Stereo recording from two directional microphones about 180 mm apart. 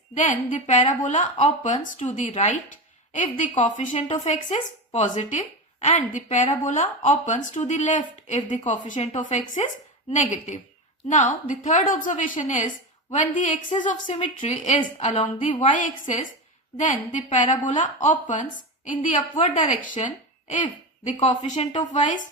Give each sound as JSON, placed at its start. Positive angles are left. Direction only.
{"t": 0.1, "sound": "a woman's voice", "side_deg": 45}
{"t": 14.8, "sound": "a woman's voice", "side_deg": 30}
{"t": 15.7, "sound": "a woman's voice", "side_deg": 45}